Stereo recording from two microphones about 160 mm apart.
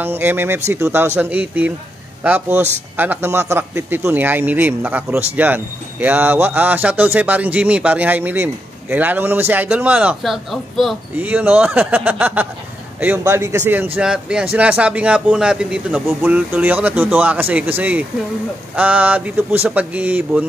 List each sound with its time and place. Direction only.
0.0 s a man's voice: 10° right (ahead or behind)
11.1 s a man's voice: 10° right (ahead or behind)